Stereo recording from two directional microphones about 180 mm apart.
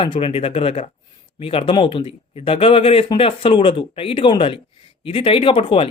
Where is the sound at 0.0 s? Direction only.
30° left (ahead or behind).